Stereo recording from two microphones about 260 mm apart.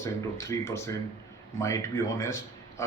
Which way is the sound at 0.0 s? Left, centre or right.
Centre.